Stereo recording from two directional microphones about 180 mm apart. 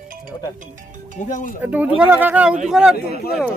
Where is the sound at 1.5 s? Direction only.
10° right (ahead or behind).